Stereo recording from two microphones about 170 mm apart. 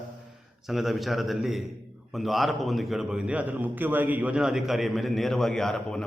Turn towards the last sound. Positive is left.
turn(degrees=5)  # may be behind; listen again after turning